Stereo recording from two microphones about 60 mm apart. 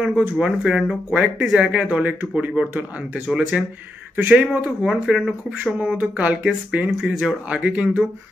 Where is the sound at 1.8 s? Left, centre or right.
Right; by 5.3 s centre.